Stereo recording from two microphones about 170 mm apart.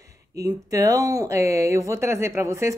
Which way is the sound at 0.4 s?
20° right (ahead or behind).